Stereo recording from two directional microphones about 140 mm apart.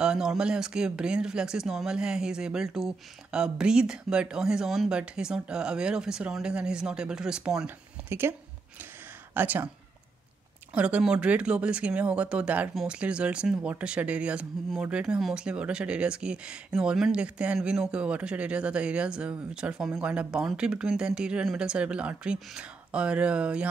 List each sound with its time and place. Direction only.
0.0 s speech: 5° right (ahead or behind)
8.1 s speech: 15° right (ahead or behind)
10.7 s speech: 10° right (ahead or behind)